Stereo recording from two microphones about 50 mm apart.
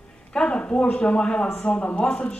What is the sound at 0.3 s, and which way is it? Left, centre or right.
A woman's voice, left.